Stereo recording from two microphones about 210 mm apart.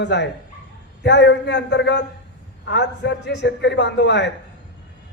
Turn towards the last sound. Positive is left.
turn(degrees=55)  # may be behind; listen again after turning